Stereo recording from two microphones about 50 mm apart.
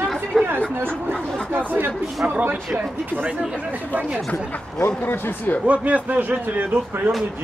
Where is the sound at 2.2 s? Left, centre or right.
Right.